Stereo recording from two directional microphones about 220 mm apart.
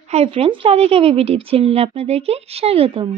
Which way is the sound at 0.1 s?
25° right (ahead or behind).